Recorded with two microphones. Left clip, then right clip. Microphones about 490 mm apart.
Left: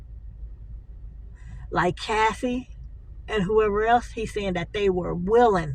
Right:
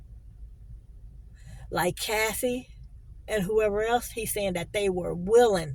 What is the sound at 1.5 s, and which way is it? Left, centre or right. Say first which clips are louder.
A woman's voice: left 4 dB; right.